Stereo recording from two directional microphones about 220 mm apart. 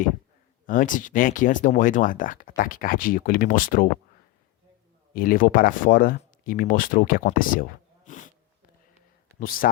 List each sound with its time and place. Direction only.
0.7 s speech: 35° left (ahead or behind)
5.1 s speech: 40° left (ahead or behind)
9.4 s speech: 40° left (ahead or behind)